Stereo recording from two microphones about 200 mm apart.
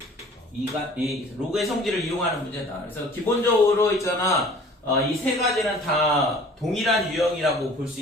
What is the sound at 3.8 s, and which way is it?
Speech, 15° left (ahead or behind).